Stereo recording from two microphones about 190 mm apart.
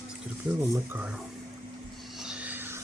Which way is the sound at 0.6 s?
10° right (ahead or behind).